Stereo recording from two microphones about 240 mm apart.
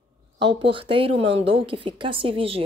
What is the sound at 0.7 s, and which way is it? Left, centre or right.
Speech, right.